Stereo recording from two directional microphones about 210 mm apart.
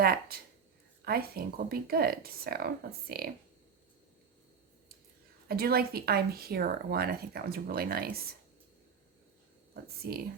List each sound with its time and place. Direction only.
0.0 s speech: 45° right (ahead or behind)
5.5 s speech: 45° right (ahead or behind)
9.7 s speech: 45° right (ahead or behind)